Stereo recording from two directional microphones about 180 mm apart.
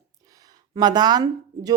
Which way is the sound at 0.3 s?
20° right (ahead or behind).